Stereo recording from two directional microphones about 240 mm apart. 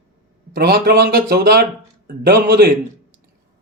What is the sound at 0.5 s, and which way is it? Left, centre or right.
Speech, right.